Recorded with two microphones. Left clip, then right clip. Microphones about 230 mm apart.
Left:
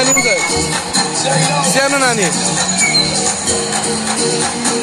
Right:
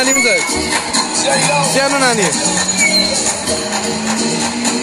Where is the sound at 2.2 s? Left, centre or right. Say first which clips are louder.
Right 1 dB; right.